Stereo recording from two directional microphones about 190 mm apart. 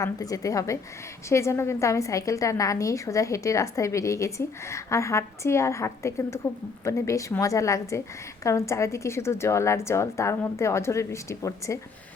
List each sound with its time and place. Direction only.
0.0 s a woman's voice: 20° left (ahead or behind)